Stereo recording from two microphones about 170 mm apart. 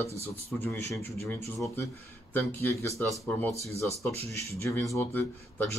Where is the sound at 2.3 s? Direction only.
15° left (ahead or behind).